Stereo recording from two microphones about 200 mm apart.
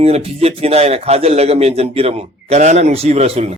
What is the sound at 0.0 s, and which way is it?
Speech, 30° right (ahead or behind).